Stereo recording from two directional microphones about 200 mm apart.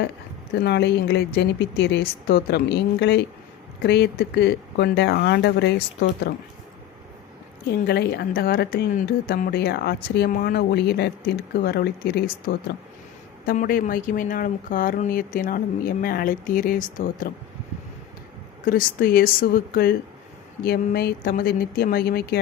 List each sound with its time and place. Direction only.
0.6 s speech: 55° left (ahead or behind)
7.7 s a woman's voice: 55° left (ahead or behind)
18.6 s a woman's voice: 45° left (ahead or behind)